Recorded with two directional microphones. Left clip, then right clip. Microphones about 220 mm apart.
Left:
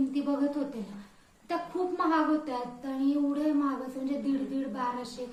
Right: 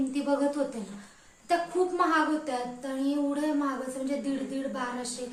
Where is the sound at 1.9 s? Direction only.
Centre (ahead or behind).